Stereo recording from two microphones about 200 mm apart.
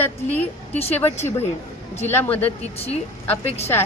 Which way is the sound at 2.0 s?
10° left (ahead or behind).